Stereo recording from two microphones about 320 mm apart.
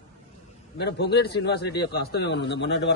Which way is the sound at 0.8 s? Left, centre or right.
Left.